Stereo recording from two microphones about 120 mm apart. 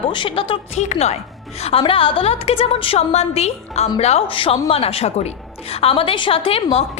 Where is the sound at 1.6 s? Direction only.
50° left (ahead or behind).